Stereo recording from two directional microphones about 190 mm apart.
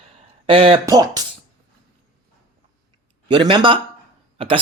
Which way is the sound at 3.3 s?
25° right (ahead or behind).